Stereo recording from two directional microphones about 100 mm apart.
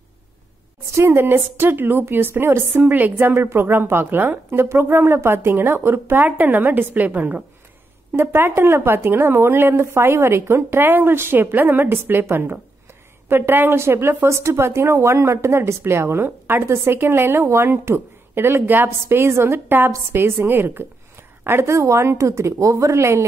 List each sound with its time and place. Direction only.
0.9 s speech: 20° right (ahead or behind)